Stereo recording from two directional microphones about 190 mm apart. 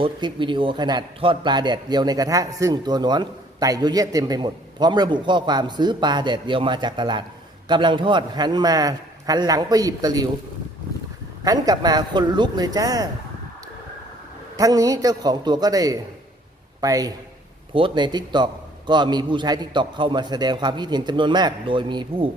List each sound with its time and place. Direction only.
0.0 s a man's voice: 25° right (ahead or behind)
11.4 s a man's voice: 20° right (ahead or behind)
14.5 s a man's voice: 20° right (ahead or behind)